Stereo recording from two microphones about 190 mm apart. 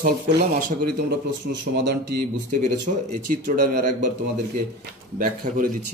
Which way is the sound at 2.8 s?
45° right (ahead or behind).